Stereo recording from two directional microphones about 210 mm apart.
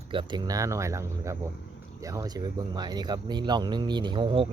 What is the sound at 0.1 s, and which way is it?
Speech, 20° right (ahead or behind).